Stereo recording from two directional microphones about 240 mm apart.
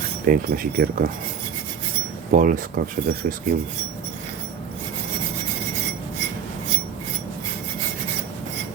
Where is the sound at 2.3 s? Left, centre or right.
Right.